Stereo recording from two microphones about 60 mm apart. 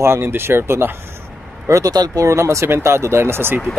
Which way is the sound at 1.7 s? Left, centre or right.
Right.